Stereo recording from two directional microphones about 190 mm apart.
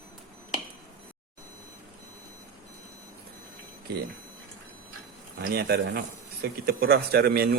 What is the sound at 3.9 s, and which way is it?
Speech, 60° right (ahead or behind).